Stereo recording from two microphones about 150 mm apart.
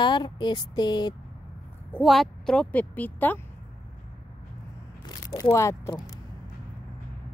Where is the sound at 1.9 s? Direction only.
Centre (ahead or behind).